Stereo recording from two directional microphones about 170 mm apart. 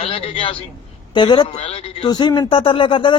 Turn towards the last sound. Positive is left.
turn(degrees=30)  # may be behind; listen again after turning